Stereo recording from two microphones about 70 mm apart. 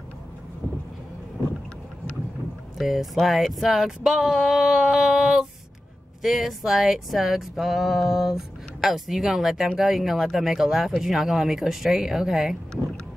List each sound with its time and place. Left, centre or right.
2.8 s speech: centre